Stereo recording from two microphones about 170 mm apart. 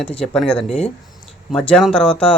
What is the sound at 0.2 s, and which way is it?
Speech, 5° left (ahead or behind).